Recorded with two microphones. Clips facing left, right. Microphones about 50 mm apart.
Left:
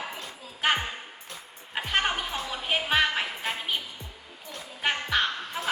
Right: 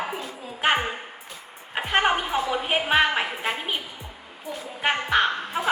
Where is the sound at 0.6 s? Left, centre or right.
Right.